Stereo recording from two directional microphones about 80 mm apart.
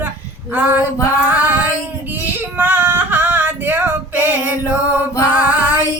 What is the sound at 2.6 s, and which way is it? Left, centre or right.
Female singing, right.